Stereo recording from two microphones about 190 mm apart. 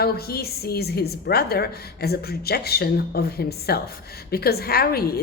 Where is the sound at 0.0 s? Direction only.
55° left (ahead or behind).